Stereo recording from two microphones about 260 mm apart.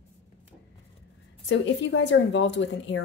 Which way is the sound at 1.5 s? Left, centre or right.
Left.